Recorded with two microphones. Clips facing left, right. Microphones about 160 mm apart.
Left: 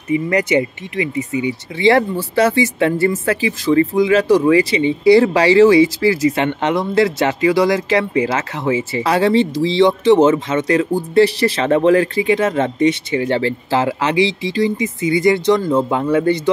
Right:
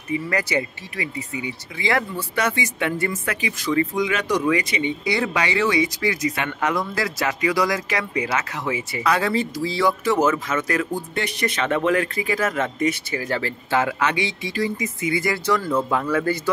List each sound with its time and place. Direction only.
0.1 s speech: 20° left (ahead or behind)